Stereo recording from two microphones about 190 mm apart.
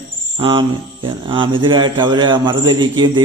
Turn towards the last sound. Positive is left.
turn(degrees=-25)  # may be behind; listen again after turning